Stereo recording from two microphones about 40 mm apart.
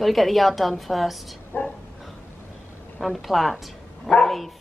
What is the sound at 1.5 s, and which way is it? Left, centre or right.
Speech, left.